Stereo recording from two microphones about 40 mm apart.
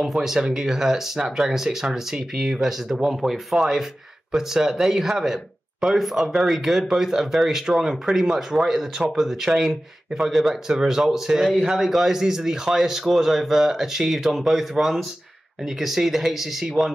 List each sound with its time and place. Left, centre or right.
0.0 s speech: centre